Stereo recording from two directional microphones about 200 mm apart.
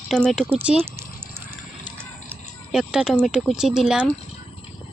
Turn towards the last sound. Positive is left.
turn(degrees=-5)  # may be behind; listen again after turning